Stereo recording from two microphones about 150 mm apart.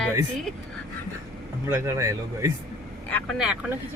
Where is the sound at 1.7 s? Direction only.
20° right (ahead or behind).